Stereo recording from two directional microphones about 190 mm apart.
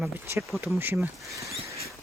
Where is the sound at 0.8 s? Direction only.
10° right (ahead or behind).